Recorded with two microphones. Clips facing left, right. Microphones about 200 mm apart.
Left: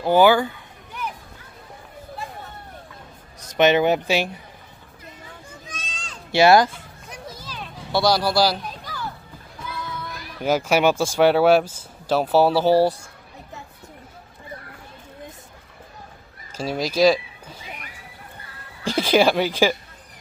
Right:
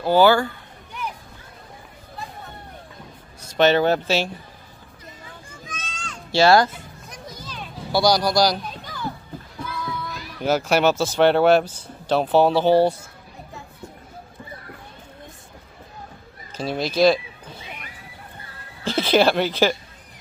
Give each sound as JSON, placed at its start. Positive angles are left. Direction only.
{"t": 0.0, "sound": "speech", "side_deg": 15}
{"t": 3.4, "sound": "speech", "side_deg": 15}
{"t": 5.7, "sound": "a sound", "side_deg": 35}
{"t": 6.3, "sound": "speech", "side_deg": 20}
{"t": 7.1, "sound": "a sound", "side_deg": 5}
{"t": 10.4, "sound": "speech", "side_deg": 10}
{"t": 16.5, "sound": "speech", "side_deg": 10}
{"t": 18.9, "sound": "speech", "side_deg": 10}